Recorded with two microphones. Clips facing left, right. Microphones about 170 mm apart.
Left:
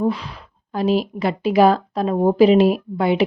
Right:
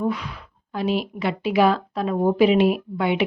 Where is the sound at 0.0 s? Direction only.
30° left (ahead or behind).